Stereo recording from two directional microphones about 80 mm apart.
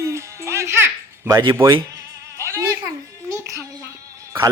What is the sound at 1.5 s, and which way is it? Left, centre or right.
Speech, right.